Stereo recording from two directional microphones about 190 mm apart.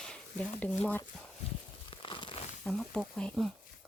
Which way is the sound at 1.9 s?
25° left (ahead or behind).